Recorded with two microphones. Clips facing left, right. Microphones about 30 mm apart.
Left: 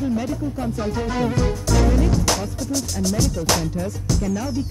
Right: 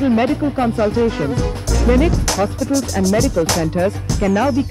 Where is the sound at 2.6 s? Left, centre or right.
Centre.